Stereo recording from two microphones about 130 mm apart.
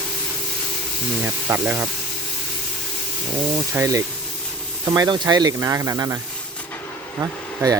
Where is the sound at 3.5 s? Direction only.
20° right (ahead or behind).